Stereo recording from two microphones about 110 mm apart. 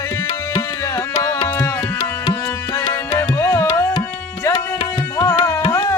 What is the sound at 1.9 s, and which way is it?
Music, 35° left (ahead or behind).